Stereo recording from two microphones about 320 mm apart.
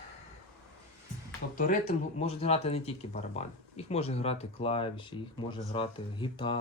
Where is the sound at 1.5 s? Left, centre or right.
Left.